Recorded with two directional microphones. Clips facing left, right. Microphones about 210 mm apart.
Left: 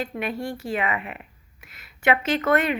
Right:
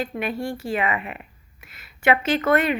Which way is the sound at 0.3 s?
30° right (ahead or behind).